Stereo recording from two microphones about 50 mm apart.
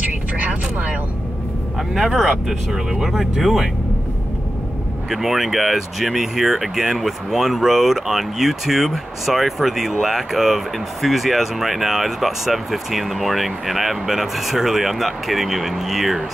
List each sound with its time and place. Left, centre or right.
0.0 s vehicle: right
2.0 s speech: centre
5.1 s speech: centre